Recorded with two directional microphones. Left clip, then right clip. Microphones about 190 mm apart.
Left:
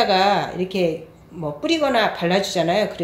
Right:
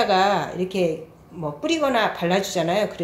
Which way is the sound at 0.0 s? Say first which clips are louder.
Left 2 dB; centre (ahead or behind).